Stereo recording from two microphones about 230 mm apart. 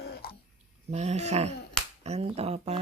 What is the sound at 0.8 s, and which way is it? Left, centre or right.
Speech, right.